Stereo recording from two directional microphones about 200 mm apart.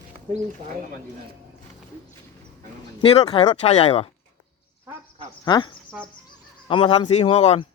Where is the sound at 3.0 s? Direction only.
30° left (ahead or behind).